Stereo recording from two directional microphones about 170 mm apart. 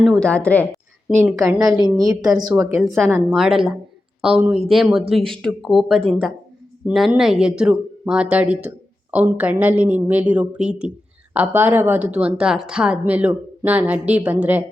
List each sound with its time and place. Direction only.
0.0 s a woman's voice: 5° left (ahead or behind)
1.1 s a woman's voice: 10° right (ahead or behind)
2.8 s a woman's voice: centre (ahead or behind)